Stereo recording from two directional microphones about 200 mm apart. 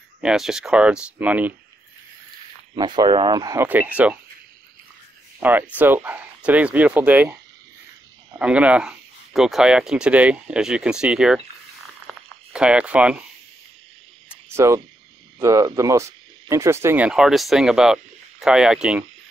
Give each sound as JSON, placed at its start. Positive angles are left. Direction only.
{"t": 0.2, "sound": "speech", "side_deg": -5}
{"t": 2.7, "sound": "speech", "side_deg": -20}
{"t": 5.4, "sound": "speech", "side_deg": -10}
{"t": 8.4, "sound": "speech", "side_deg": -5}
{"t": 12.1, "sound": "a sound", "side_deg": -5}
{"t": 14.3, "sound": "owl", "side_deg": -15}
{"t": 15.3, "sound": "speech", "side_deg": -15}